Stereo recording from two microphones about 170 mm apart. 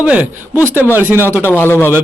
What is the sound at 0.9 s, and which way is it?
Speech, 15° right (ahead or behind).